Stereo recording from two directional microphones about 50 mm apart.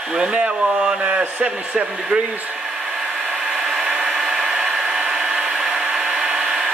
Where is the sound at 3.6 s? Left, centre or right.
Centre.